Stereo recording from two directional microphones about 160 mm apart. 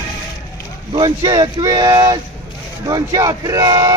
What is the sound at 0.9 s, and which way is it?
Speech, 30° right (ahead or behind).